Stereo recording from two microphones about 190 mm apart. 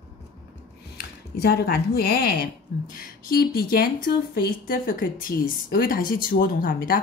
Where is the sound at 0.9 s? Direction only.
55° left (ahead or behind).